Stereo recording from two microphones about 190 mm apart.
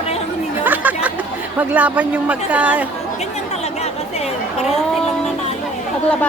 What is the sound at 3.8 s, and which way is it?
Chatter, 35° left (ahead or behind).